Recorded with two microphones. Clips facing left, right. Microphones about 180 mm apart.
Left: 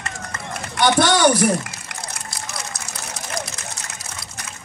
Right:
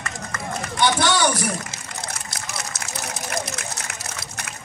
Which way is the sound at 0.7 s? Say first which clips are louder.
Left 4 dB; 50° left (ahead or behind).